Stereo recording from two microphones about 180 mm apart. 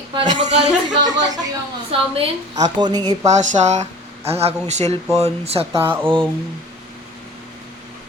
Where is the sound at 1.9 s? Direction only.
30° right (ahead or behind).